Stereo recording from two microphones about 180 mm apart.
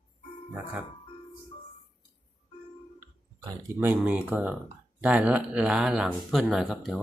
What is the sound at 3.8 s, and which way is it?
Speech, 10° right (ahead or behind).